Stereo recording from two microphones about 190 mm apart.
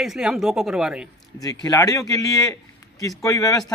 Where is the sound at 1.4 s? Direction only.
20° left (ahead or behind).